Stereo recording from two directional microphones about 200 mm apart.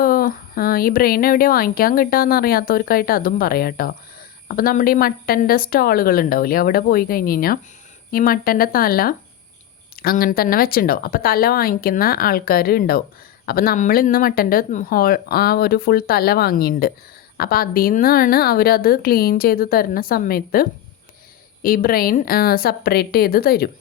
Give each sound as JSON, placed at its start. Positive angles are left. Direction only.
{"t": 0.0, "sound": "speech", "side_deg": 45}